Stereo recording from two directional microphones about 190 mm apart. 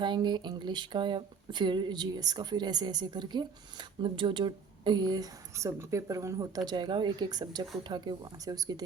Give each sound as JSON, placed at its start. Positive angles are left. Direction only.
{"t": 0.0, "sound": "speech", "side_deg": -25}